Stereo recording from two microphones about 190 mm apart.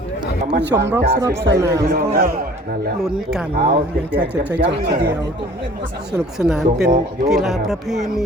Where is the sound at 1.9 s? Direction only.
50° right (ahead or behind).